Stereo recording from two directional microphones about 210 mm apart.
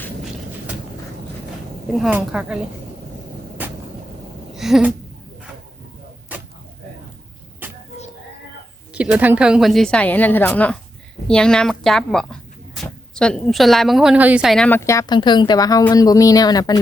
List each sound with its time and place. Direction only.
1.9 s speech: 5° right (ahead or behind)
3.6 s vehicle: 10° right (ahead or behind)
4.5 s a sound: centre (ahead or behind)
6.3 s arrow: 5° right (ahead or behind)
8.9 s speech: 5° right (ahead or behind); by 16.7 s 20° left (ahead or behind)